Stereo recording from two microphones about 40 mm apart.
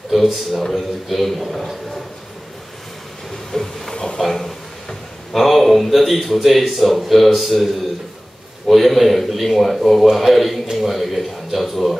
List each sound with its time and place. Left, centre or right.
0.1 s speech: centre
3.5 s speech: centre
3.9 s a sound: centre
4.2 s a man's voice: centre